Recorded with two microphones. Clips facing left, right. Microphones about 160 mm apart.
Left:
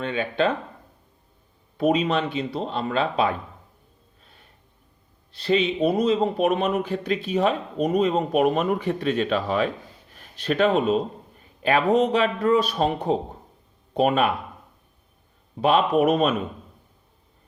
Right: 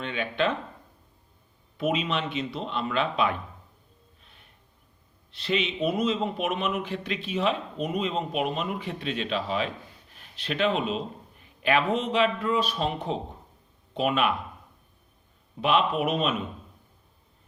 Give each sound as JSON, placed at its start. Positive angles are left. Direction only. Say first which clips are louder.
{"t": 0.0, "sound": "a man's voice", "louder": "left 4 dB", "side_deg": 35}
{"t": 1.8, "sound": "a man's voice", "louder": "left 6 dB", "side_deg": 40}
{"t": 4.2, "sound": "snort", "louder": "left 3 dB", "side_deg": 40}
{"t": 5.3, "sound": "a man's voice", "louder": "left 6 dB", "side_deg": 35}
{"t": 15.6, "sound": "speech", "louder": "left 5 dB", "side_deg": 40}